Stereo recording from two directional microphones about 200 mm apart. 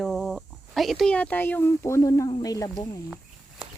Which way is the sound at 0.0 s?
Centre (ahead or behind).